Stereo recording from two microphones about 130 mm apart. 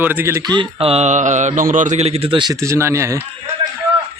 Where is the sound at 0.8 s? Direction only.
55° right (ahead or behind); by 2.6 s 35° right (ahead or behind).